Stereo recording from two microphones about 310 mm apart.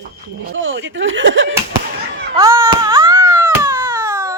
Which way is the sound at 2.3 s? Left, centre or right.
Centre.